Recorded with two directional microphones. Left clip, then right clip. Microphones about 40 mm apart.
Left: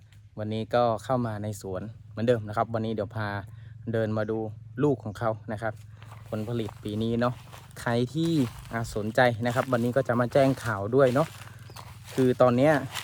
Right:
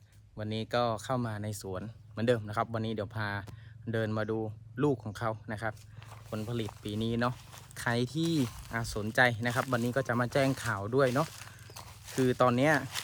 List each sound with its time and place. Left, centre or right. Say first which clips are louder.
0.3 s speech: left 5 dB; right
0.7 s speech: left 6 dB; centre
2.2 s speech: left 4 dB; right
2.5 s speech: left 5 dB; right
4.9 s speech: left 6 dB; centre
5.5 s speech: left 4 dB; right
6.3 s speech: left 5 dB; right
7.8 s speech: left 4 dB; right
8.0 s speech: left 4 dB; right
9.0 s speech: left 4 dB; centre
9.5 s speech: left 5 dB; centre
9.7 s speech: left 6 dB; centre
11.7 s clip-clop: left 2 dB; right
12.2 s speech: left 5 dB; right